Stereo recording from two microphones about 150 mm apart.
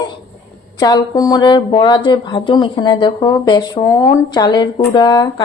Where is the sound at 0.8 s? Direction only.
25° left (ahead or behind).